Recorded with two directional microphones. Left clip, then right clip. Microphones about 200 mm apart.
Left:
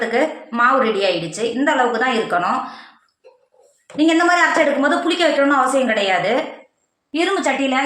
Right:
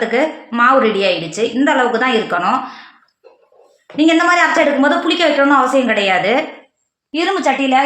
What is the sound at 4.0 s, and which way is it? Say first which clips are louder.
A woman's voice: right 3 dB; 45° right (ahead or behind).